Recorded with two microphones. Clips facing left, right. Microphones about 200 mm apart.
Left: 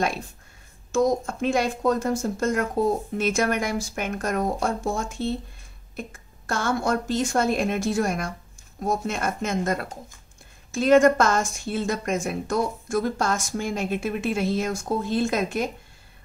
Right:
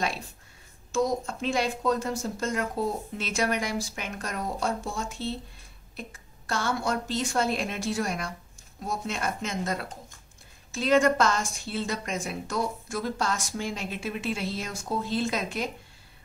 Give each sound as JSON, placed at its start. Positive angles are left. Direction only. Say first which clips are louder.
{"t": 0.9, "sound": "a woman's voice", "louder": "left 5 dB", "side_deg": 50}